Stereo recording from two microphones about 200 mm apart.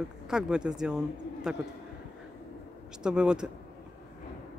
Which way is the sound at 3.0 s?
5° right (ahead or behind).